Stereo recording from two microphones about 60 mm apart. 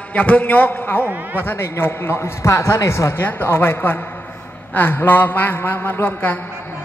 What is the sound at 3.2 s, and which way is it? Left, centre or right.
A man's voice, left.